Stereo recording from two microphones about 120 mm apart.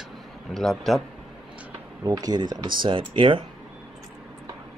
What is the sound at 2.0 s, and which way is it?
Speech, 30° right (ahead or behind).